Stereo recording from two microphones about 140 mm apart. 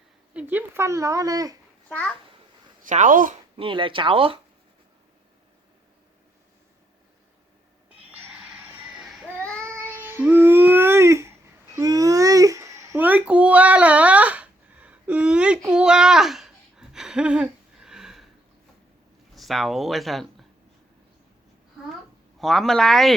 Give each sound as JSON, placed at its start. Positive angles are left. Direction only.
{"t": 0.3, "sound": "speech", "side_deg": -15}
{"t": 1.9, "sound": "a child's voice", "side_deg": 10}
{"t": 2.8, "sound": "speech", "side_deg": -65}
{"t": 3.6, "sound": "speech", "side_deg": -35}
{"t": 8.1, "sound": "a sound", "side_deg": -15}
{"t": 9.2, "sound": "child singing", "side_deg": 10}
{"t": 9.6, "sound": "a sound", "side_deg": -15}
{"t": 11.7, "sound": "babbling", "side_deg": -25}
{"t": 19.3, "sound": "speech", "side_deg": 0}
{"t": 22.4, "sound": "speech", "side_deg": 0}